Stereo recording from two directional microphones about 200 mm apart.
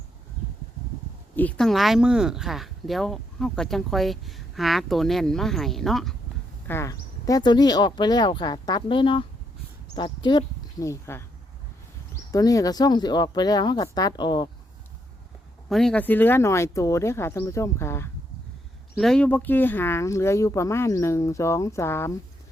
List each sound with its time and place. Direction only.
1.4 s speech: 5° left (ahead or behind)
6.7 s speech: 15° left (ahead or behind)
12.3 s speech: 15° left (ahead or behind)
15.7 s speech: 5° left (ahead or behind)
18.9 s speech: 5° left (ahead or behind)